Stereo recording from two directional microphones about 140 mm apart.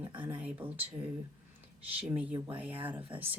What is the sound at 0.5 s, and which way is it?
Speech, 10° right (ahead or behind).